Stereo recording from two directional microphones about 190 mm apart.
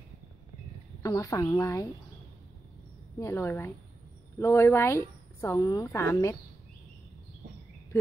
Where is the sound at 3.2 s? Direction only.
15° left (ahead or behind).